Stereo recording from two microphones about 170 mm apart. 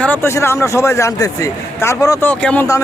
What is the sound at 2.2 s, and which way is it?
Speech, 10° left (ahead or behind).